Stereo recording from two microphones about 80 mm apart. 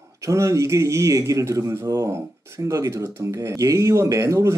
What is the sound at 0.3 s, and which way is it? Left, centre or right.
Speech, right.